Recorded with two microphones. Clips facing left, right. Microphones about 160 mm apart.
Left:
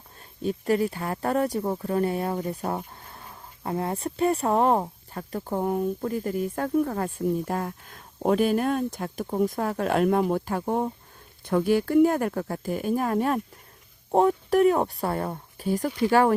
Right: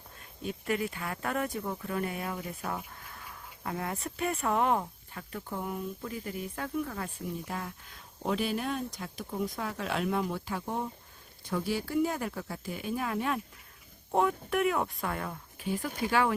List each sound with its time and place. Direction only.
0.4 s speech: 35° left (ahead or behind)